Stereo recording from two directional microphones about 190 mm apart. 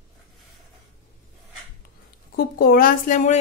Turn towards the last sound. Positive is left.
turn(degrees=40)  # may be behind; listen again after turning